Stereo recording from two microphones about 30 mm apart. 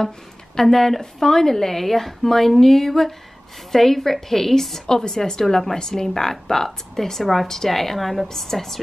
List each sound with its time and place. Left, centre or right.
0.6 s a woman's voice: centre
4.8 s a woman's voice: left